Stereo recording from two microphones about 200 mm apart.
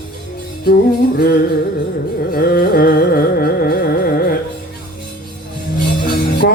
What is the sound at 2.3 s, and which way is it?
Carnatic music, 50° left (ahead or behind).